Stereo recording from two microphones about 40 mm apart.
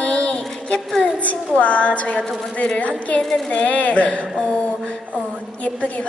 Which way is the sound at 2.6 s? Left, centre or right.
Left.